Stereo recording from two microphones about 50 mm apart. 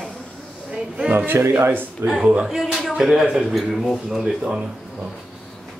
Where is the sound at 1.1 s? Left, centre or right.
Right.